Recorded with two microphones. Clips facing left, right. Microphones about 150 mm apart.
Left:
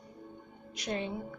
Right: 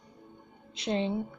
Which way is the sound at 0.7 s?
25° right (ahead or behind).